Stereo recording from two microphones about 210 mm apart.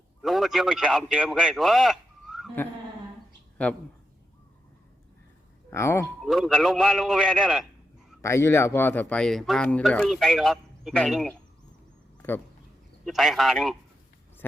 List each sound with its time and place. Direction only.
0.2 s a man's voice: centre (ahead or behind)
5.7 s speech: 10° left (ahead or behind)
6.2 s speech: centre (ahead or behind)
8.2 s speech: 15° left (ahead or behind)
13.1 s speech: centre (ahead or behind)